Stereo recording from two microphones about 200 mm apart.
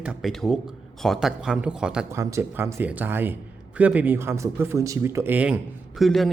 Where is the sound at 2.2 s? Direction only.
15° right (ahead or behind).